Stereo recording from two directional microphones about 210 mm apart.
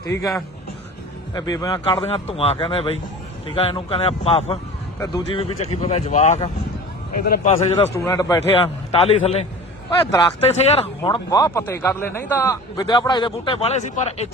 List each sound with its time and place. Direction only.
0.1 s a man's voice: 15° left (ahead or behind)
1.3 s speech: 15° left (ahead or behind)
7.9 s a man's voice: 15° left (ahead or behind)
8.5 s speech: 30° left (ahead or behind)